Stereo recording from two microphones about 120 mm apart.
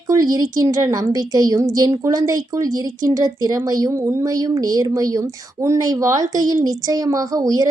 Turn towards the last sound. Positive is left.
turn(degrees=-30)  # may be behind; listen again after turning